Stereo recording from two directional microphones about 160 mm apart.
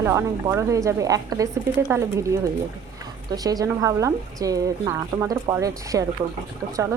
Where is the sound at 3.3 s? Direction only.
25° right (ahead or behind).